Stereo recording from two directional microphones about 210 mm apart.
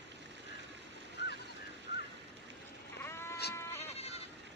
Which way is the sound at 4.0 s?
30° left (ahead or behind).